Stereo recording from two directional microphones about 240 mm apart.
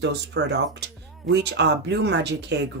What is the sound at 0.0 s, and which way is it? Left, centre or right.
Speech, right.